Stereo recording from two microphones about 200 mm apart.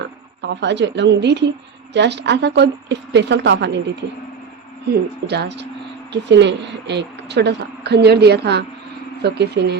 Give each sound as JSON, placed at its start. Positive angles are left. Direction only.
{"t": 0.4, "sound": "a woman's voice", "side_deg": -60}
{"t": 5.2, "sound": "a woman's voice", "side_deg": -55}